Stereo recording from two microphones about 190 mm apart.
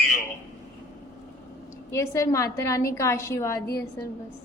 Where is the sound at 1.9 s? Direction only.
15° left (ahead or behind).